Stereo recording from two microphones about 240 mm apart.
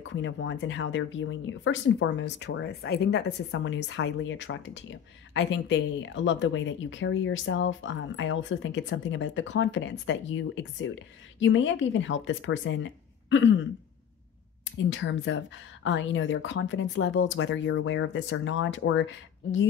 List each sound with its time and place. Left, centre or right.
0.1 s speech: left
14.8 s speech: left